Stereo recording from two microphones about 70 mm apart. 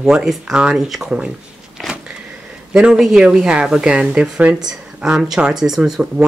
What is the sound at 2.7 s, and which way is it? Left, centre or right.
Speech, centre.